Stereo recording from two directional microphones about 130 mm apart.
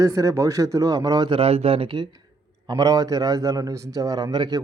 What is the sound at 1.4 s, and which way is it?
A man's voice, 50° right (ahead or behind).